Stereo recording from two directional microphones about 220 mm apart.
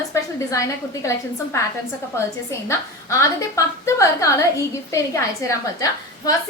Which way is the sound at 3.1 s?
15° left (ahead or behind).